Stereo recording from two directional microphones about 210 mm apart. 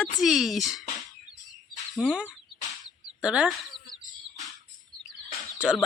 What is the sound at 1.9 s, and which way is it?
Speech, 5° right (ahead or behind).